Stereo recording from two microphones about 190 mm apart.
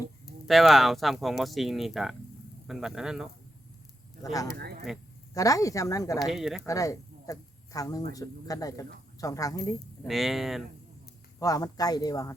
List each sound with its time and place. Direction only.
0.4 s speech: centre (ahead or behind)
4.2 s speech: 20° left (ahead or behind)
4.5 s speech: 55° right (ahead or behind)
5.3 s speech: 20° left (ahead or behind)
6.2 s speech: centre (ahead or behind)
6.7 s speech: 15° left (ahead or behind)
10.1 s speech: centre (ahead or behind)
11.3 s speech: 20° left (ahead or behind)